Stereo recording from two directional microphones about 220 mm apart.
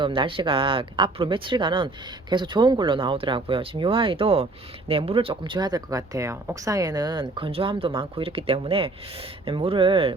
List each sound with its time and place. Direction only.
0.0 s speech: 25° right (ahead or behind)